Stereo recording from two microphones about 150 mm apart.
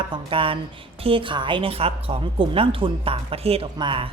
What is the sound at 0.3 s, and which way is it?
A woman's voice, 35° right (ahead or behind).